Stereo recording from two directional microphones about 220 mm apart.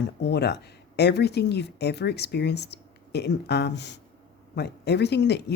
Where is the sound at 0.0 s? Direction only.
50° left (ahead or behind).